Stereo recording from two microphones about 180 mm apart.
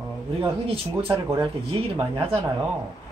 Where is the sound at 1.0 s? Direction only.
15° right (ahead or behind).